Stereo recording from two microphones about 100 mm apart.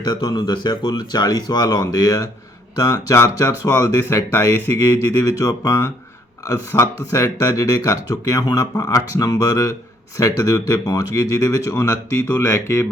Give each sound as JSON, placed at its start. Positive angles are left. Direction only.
{"t": 0.1, "sound": "speech", "side_deg": 45}